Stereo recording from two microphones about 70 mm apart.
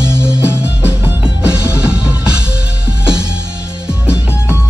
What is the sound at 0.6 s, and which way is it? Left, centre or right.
Music, right.